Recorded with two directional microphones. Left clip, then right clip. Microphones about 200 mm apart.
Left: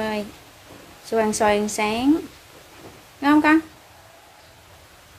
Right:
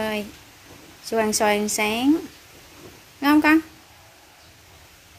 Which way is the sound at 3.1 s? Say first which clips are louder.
Left 1 dB; 15° right (ahead or behind).